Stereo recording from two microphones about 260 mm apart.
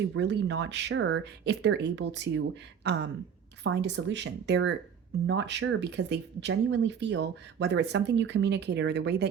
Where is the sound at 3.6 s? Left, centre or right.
Right.